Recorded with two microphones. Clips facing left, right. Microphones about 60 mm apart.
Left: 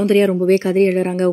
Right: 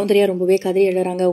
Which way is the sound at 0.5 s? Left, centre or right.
Left.